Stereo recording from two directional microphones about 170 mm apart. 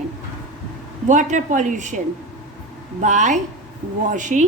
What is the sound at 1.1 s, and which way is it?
A woman's voice, 45° right (ahead or behind).